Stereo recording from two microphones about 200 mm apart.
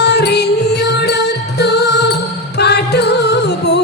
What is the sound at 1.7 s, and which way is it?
Music, 55° left (ahead or behind).